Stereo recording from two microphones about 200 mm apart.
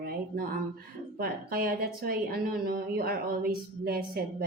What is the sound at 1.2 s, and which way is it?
A woman's voice, 50° right (ahead or behind).